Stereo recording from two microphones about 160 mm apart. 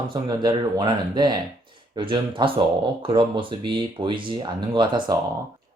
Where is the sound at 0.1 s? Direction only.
25° right (ahead or behind).